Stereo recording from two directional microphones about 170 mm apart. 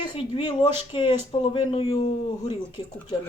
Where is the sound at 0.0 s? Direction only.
30° left (ahead or behind).